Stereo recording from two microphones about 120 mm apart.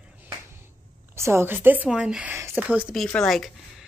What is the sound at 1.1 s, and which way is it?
A woman's voice, 20° right (ahead or behind).